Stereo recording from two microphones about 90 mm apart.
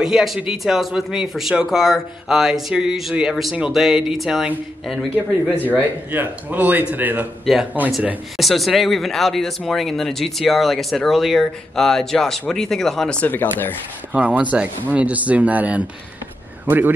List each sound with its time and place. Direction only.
0.0 s speech: 5° right (ahead or behind)
5.8 s speech: 20° right (ahead or behind)
8.4 s speech: centre (ahead or behind)
13.2 s speech: 20° left (ahead or behind)
14.1 s speech: 15° right (ahead or behind)